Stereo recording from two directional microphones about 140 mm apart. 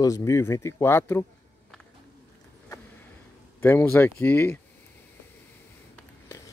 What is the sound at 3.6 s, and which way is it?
Speech, 15° left (ahead or behind).